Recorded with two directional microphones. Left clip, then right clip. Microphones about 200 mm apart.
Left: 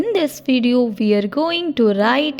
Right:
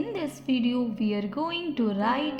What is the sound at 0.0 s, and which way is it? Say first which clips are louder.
Speech: left 13 dB; 50° left (ahead or behind).